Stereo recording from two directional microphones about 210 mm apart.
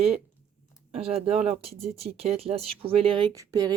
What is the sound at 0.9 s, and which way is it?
Speech, 30° right (ahead or behind).